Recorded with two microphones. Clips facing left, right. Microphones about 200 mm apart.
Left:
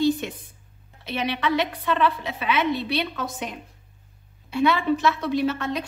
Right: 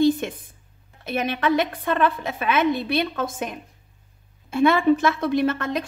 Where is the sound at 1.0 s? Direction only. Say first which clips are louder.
Right 3 dB; 45° right (ahead or behind).